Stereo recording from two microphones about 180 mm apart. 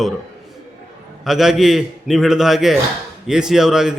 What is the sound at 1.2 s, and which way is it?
A man's voice, centre (ahead or behind).